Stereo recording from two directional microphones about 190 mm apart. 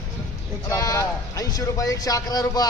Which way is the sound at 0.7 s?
15° left (ahead or behind).